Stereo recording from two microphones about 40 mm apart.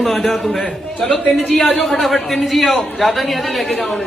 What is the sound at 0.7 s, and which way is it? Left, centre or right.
Speech, centre.